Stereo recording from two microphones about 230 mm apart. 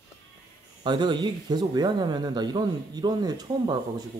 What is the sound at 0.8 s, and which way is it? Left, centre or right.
Speech, centre.